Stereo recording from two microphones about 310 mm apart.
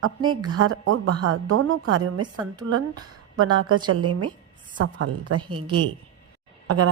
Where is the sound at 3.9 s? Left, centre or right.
Right.